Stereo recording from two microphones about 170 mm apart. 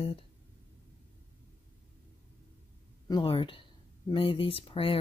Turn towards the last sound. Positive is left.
turn(degrees=30)  # may be behind; listen again after turning